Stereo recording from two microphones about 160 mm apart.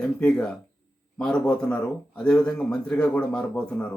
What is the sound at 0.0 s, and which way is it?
A man's voice, 5° left (ahead or behind).